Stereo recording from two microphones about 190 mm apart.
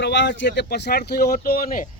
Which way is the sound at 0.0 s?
70° left (ahead or behind).